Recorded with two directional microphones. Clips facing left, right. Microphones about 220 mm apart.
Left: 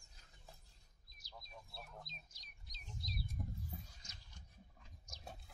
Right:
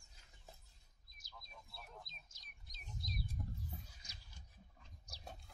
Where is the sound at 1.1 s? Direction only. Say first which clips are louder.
Left 3 dB; 50° right (ahead or behind).